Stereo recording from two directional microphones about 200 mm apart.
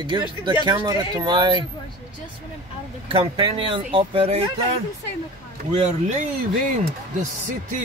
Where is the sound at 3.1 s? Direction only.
25° right (ahead or behind).